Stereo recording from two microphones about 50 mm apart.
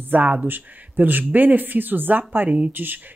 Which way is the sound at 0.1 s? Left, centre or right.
Right.